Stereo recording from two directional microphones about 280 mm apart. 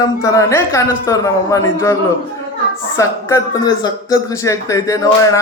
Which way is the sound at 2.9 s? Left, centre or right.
Centre.